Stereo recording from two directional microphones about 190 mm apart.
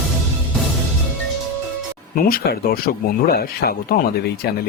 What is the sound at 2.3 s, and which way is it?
Speech, 55° left (ahead or behind).